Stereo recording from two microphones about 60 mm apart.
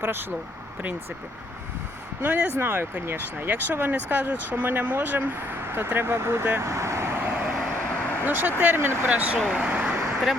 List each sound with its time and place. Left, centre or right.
2.2 s speech: right
6.7 s vehicle: right
7.2 s vehicle: right
8.2 s speech: right
9.0 s speech: right
9.6 s vehicle: right